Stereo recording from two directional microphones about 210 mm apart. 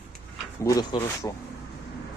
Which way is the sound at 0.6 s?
15° left (ahead or behind).